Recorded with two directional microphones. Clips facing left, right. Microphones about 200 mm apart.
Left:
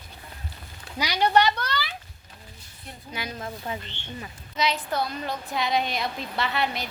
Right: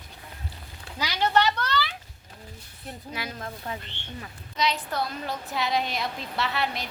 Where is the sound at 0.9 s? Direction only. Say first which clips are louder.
Left 2 dB; 15° left (ahead or behind).